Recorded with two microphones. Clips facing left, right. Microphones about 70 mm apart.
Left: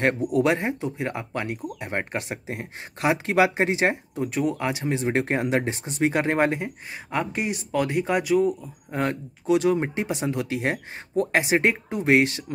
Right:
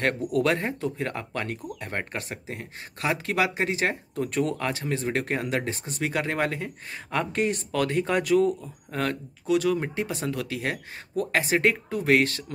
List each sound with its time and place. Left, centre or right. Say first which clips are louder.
0.3 s speech: left 2 dB; centre
4.1 s speech: left 1 dB; centre; by 6.7 s left
6.9 s speech: even; centre
8.9 s speech: left 2 dB; left